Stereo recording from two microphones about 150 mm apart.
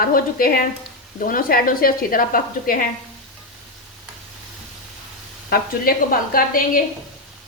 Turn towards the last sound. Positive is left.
turn(degrees=70)  # may be behind; listen again after turning